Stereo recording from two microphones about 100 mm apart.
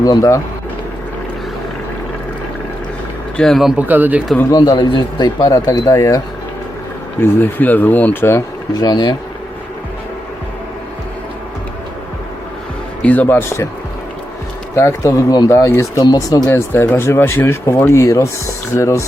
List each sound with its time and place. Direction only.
0.0 s speech: 35° left (ahead or behind)
3.3 s speech: 5° left (ahead or behind)
3.8 s speech: 15° right (ahead or behind)
4.5 s speech: 40° left (ahead or behind)
7.2 s speech: 20° left (ahead or behind)
8.8 s speech: 45° left (ahead or behind)
13.0 s speech: 15° left (ahead or behind)
14.8 s speech: 25° left (ahead or behind)